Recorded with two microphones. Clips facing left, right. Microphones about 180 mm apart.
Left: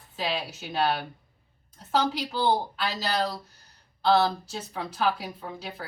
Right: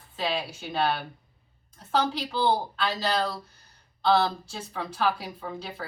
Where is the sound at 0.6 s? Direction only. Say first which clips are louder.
Left 1 dB; 5° left (ahead or behind).